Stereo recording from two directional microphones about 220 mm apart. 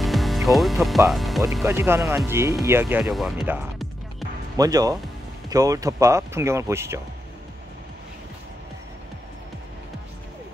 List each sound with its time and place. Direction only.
0.0 s music: centre (ahead or behind)
1.6 s speech: 10° right (ahead or behind)
4.6 s speech: 15° right (ahead or behind)